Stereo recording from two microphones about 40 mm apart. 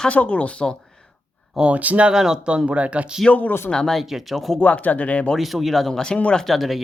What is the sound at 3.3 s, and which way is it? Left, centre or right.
Speech, left.